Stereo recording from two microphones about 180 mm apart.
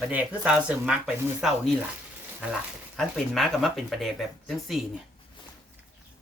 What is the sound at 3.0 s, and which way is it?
Speech, centre (ahead or behind).